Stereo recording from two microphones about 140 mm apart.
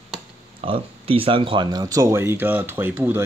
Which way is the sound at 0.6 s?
40° right (ahead or behind).